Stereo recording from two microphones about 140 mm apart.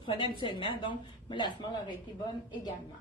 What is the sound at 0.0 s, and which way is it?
A woman's voice, 35° left (ahead or behind).